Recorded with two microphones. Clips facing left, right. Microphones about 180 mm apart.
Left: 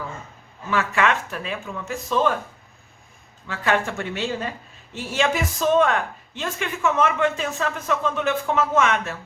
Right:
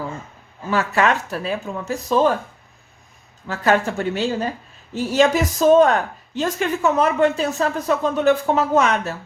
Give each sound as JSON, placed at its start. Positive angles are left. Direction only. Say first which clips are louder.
{"t": 0.7, "sound": "speech", "louder": "right 3 dB", "side_deg": -40}
{"t": 3.4, "sound": "speech", "louder": "right 4 dB", "side_deg": -40}